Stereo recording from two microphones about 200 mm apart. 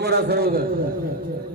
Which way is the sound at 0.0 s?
55° right (ahead or behind).